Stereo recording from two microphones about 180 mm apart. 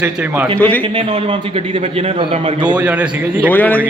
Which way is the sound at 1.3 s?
30° right (ahead or behind).